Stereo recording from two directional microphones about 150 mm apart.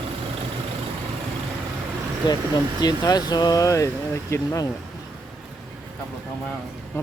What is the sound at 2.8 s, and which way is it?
Speech, 25° left (ahead or behind).